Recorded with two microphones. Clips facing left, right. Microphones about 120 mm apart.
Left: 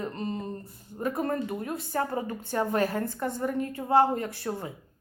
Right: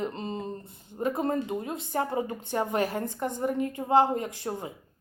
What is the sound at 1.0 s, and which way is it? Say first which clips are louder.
Speech: right 1 dB; 20° right (ahead or behind).